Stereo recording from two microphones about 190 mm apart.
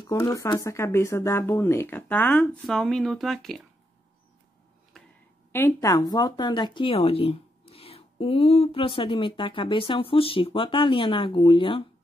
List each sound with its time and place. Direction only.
0.0 s speech: 15° left (ahead or behind); by 3.6 s centre (ahead or behind)
4.9 s a sound: centre (ahead or behind)
5.5 s speech: 10° left (ahead or behind); by 11.8 s 25° left (ahead or behind)